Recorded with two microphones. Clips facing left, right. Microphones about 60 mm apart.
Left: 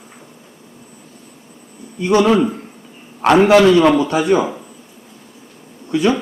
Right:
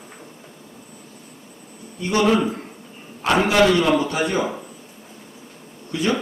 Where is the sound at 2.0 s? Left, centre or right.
Left.